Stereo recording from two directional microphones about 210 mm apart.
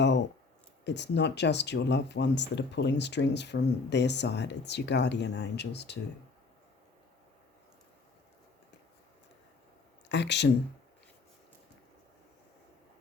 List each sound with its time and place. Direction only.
0.9 s speech: 55° left (ahead or behind)
10.1 s speech: 55° left (ahead or behind)